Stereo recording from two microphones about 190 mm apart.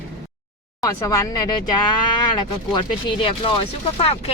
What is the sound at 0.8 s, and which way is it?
Speech, 15° left (ahead or behind).